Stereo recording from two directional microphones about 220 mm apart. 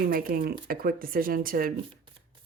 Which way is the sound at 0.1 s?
40° right (ahead or behind).